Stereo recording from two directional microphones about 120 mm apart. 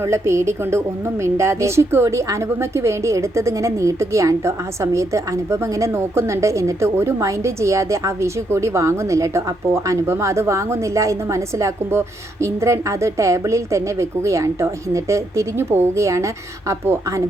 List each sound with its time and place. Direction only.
0.0 s a woman's voice: 25° right (ahead or behind)